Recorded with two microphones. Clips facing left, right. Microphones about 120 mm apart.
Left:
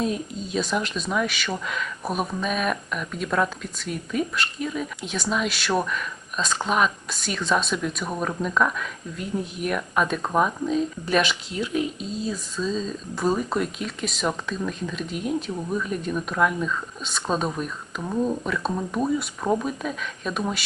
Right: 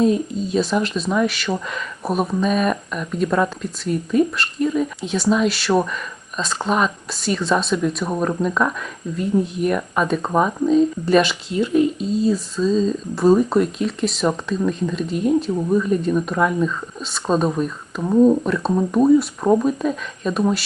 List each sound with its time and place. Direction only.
0.0 s speech: centre (ahead or behind)
18.0 s speech: 15° right (ahead or behind)
18.4 s speech: centre (ahead or behind)
19.4 s speech: 10° right (ahead or behind)
19.6 s speech: centre (ahead or behind)